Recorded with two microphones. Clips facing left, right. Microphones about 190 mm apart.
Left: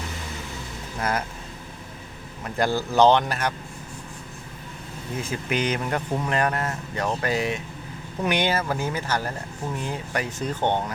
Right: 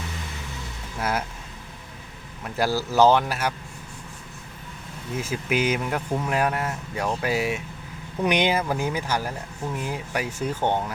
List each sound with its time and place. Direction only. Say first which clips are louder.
0.9 s speech: even; 5° right (ahead or behind)
2.4 s speech: even; 5° right (ahead or behind)
5.1 s speech: right 2 dB; 5° right (ahead or behind)